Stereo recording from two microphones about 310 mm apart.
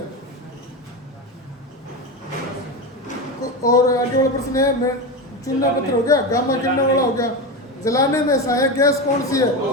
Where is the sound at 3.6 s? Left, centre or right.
Centre.